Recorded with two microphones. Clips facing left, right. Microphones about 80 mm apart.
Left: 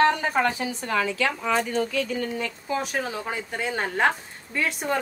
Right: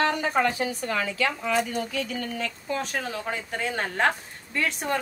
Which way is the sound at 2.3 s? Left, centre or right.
Centre.